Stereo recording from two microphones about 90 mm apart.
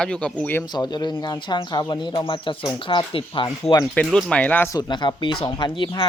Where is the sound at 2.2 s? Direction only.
70° left (ahead or behind); by 3.8 s 55° left (ahead or behind).